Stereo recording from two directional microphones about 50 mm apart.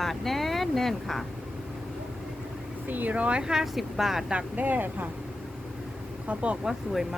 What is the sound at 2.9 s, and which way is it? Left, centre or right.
Speech, right.